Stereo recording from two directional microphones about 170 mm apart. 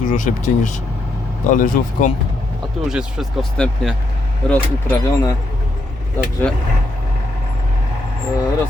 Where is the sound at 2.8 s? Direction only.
Centre (ahead or behind).